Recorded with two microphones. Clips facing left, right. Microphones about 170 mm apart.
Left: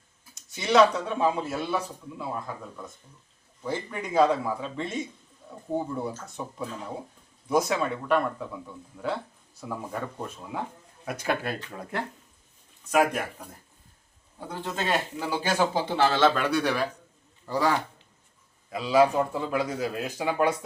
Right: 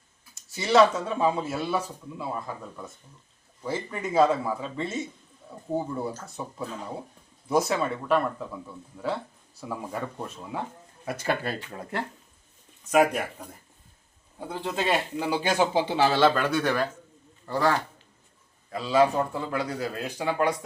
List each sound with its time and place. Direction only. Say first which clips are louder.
0.5 s speech: even; 5° right (ahead or behind)
14.5 s speech: right 2 dB; 10° right (ahead or behind)
16.2 s speech: right 1 dB; centre (ahead or behind)
18.9 s a man's voice: left 1 dB; 15° left (ahead or behind)